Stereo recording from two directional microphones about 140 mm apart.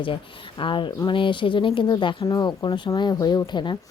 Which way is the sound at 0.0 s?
40° left (ahead or behind).